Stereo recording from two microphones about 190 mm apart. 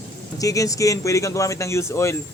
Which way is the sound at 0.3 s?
15° left (ahead or behind).